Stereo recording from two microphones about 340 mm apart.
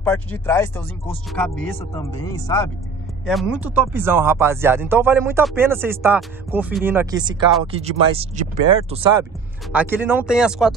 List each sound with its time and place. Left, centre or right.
0.0 s speech: centre
3.3 s speech: centre
9.7 s speech: centre